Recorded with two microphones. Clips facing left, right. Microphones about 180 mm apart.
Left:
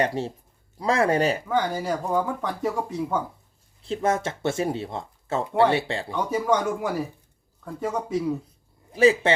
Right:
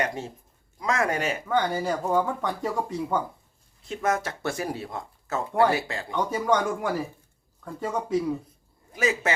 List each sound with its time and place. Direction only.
0.0 s speech: 35° left (ahead or behind)
1.5 s speech: 5° left (ahead or behind)
3.8 s speech: 30° left (ahead or behind)
6.1 s speech: 5° left (ahead or behind)
8.9 s a man's voice: 30° left (ahead or behind)